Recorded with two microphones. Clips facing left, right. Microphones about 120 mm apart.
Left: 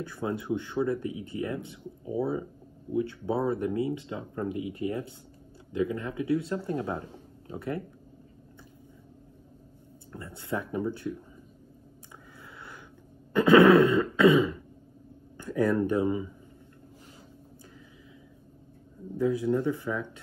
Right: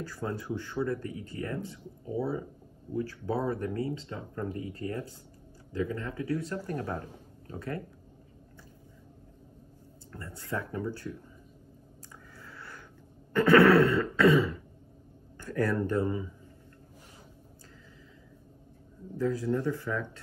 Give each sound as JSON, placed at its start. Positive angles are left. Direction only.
{"t": 0.0, "sound": "speech", "side_deg": 20}
{"t": 10.1, "sound": "speech", "side_deg": 20}
{"t": 12.4, "sound": "a sound", "side_deg": 20}
{"t": 13.3, "sound": "throat clearing", "side_deg": 15}
{"t": 15.3, "sound": "a sound", "side_deg": 15}
{"t": 15.9, "sound": "speech", "side_deg": 15}
{"t": 19.1, "sound": "speech", "side_deg": 20}